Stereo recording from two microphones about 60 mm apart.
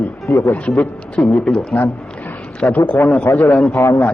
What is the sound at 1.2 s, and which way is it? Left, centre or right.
Speech, left.